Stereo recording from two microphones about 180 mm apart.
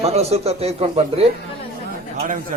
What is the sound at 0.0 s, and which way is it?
Speech, 35° right (ahead or behind).